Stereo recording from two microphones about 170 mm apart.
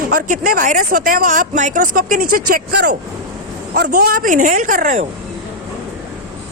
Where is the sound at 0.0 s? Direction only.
60° right (ahead or behind).